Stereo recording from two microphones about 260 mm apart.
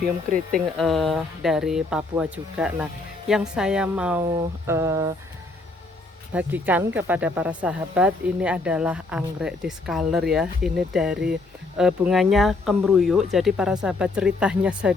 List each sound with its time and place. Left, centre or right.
0.3 s speech: right
0.8 s speech: centre
6.3 s speech: centre